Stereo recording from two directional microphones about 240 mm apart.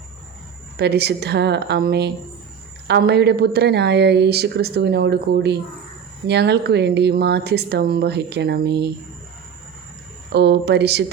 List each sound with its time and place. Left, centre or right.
0.8 s speech: right
10.3 s speech: right